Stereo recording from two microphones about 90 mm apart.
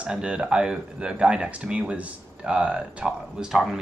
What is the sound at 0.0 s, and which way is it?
Speech, 10° right (ahead or behind).